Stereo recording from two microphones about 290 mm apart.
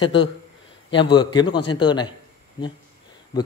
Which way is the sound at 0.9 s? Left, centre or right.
Centre.